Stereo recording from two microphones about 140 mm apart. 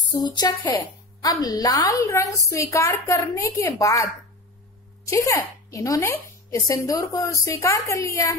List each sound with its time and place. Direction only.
0.1 s a woman's voice: 30° left (ahead or behind)